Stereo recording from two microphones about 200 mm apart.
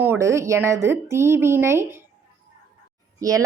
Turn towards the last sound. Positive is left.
turn(degrees=-15)  # may be behind; listen again after turning